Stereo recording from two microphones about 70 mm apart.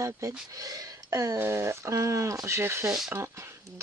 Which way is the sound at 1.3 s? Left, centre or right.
Right.